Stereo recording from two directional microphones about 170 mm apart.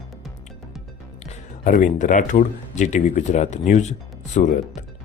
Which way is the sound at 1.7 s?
50° left (ahead or behind).